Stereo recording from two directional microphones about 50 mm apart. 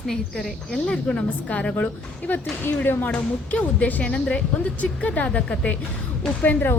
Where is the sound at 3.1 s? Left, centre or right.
Left.